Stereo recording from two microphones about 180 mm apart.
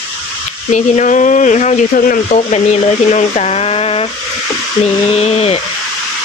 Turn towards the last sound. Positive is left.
turn(degrees=35)  # may be behind; listen again after turning